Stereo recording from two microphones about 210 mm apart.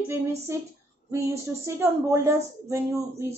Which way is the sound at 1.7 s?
10° right (ahead or behind).